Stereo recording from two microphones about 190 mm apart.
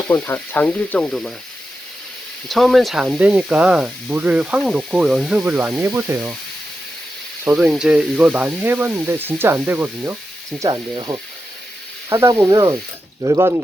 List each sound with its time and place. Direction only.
0.1 s speech: 10° left (ahead or behind)
2.5 s speech: centre (ahead or behind)
7.5 s speech: 5° right (ahead or behind)
10.6 s speech: 20° right (ahead or behind)